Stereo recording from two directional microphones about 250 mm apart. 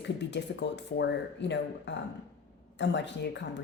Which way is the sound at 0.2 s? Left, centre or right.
Left.